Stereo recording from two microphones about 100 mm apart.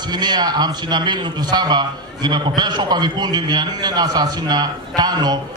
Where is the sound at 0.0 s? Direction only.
45° right (ahead or behind).